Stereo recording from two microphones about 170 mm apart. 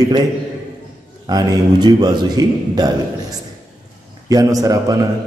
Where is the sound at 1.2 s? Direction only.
25° right (ahead or behind).